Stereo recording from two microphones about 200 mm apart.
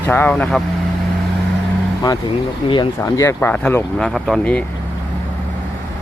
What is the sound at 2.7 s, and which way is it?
Speech, 20° left (ahead or behind).